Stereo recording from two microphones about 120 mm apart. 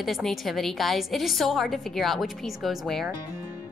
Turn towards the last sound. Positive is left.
turn(degrees=0)  # may be behind; listen again after turning